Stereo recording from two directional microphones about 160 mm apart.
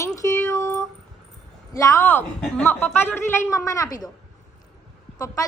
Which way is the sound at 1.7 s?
20° left (ahead or behind).